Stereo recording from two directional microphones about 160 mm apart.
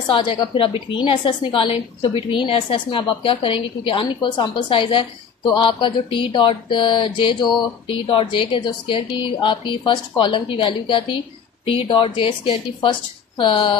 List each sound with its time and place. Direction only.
0.1 s a woman's voice: 30° left (ahead or behind)